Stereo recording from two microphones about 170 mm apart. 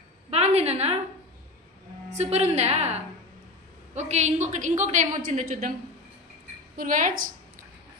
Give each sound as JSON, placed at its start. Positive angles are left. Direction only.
{"t": 0.3, "sound": "a sound", "side_deg": -40}
{"t": 2.1, "sound": "a woman's voice", "side_deg": -40}
{"t": 6.8, "sound": "a woman's voice", "side_deg": -50}